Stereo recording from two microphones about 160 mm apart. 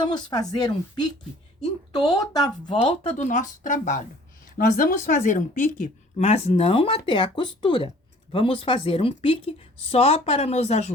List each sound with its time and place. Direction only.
0.0 s speech: 30° left (ahead or behind); by 4.0 s 50° left (ahead or behind)
4.5 s a woman's voice: 60° left (ahead or behind); by 10.9 s 45° left (ahead or behind)